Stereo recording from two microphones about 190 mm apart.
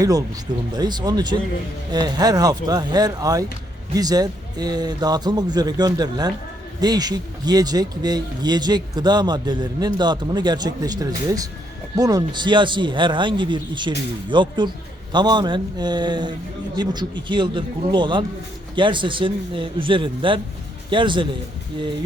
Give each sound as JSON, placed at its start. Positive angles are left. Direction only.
{"t": 0.0, "sound": "speech", "side_deg": -20}